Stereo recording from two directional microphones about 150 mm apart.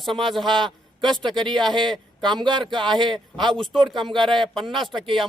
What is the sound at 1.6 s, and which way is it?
Speech, 5° left (ahead or behind).